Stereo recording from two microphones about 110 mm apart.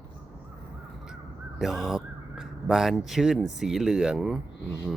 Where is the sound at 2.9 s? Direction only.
Centre (ahead or behind).